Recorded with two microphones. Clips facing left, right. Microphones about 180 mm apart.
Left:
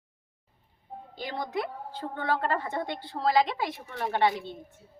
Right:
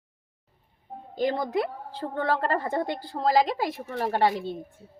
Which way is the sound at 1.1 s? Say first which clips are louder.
Right 7 dB; 45° right (ahead or behind).